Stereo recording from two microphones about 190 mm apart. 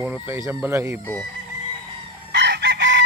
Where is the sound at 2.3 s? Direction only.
65° right (ahead or behind).